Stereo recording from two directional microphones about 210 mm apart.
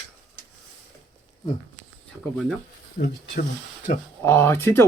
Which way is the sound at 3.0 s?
50° left (ahead or behind).